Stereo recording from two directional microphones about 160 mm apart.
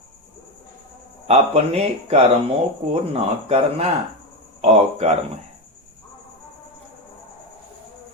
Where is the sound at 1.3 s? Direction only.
40° right (ahead or behind).